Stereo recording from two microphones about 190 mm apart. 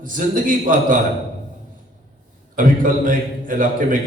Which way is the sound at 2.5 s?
45° right (ahead or behind).